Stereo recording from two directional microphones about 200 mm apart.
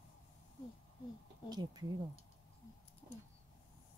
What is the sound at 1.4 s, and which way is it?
Speech, 20° right (ahead or behind).